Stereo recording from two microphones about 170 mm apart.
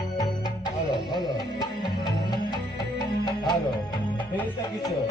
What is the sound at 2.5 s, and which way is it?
Music, 25° left (ahead or behind).